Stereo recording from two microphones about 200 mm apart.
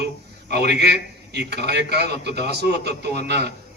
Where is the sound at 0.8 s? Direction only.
55° right (ahead or behind).